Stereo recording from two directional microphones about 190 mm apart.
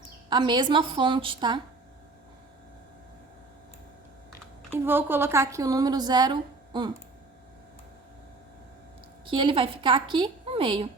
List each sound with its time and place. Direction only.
0.3 s a woman's voice: 25° right (ahead or behind)
4.7 s a woman's voice: 10° right (ahead or behind)
9.2 s a woman's voice: 25° right (ahead or behind)